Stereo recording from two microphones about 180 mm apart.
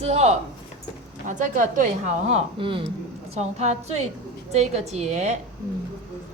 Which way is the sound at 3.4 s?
40° right (ahead or behind).